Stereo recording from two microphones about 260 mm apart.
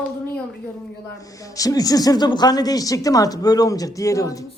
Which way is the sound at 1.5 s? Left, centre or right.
Centre.